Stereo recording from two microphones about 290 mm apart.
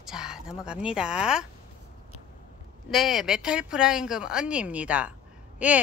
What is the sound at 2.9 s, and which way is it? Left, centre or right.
Speech, centre.